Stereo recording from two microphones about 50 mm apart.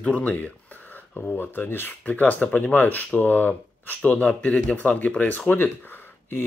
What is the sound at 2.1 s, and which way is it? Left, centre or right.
Speech, left.